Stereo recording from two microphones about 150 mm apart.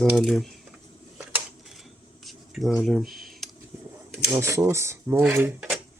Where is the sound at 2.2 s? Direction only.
Centre (ahead or behind).